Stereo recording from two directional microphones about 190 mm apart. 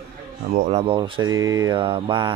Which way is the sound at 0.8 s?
25° right (ahead or behind).